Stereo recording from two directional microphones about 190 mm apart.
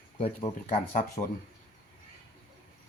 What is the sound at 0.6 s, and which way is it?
Speech, 40° left (ahead or behind).